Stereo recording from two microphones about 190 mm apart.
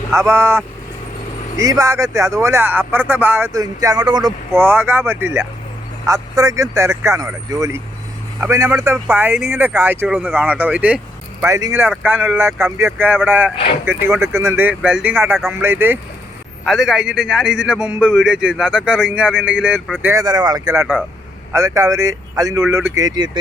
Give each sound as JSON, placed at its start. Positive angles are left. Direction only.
{"t": 0.1, "sound": "a man's voice", "side_deg": -15}